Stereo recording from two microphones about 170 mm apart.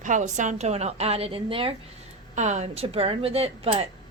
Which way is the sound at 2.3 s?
45° right (ahead or behind).